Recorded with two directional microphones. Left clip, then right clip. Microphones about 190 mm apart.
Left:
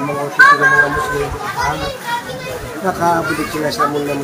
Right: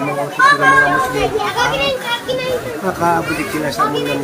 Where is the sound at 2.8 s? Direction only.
10° right (ahead or behind).